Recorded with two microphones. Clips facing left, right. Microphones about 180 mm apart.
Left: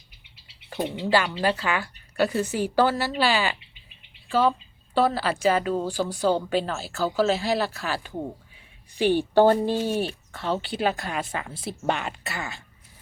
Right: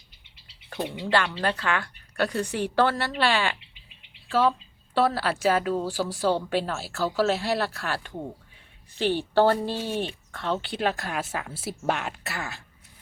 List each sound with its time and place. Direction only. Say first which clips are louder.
0.4 s frog: left 2 dB; 5° left (ahead or behind)
1.1 s speech: left 2 dB; 5° left (ahead or behind)
9.0 s speech: left 3 dB; 15° left (ahead or behind)